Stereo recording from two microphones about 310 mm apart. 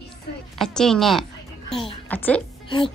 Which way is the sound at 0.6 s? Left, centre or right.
Centre.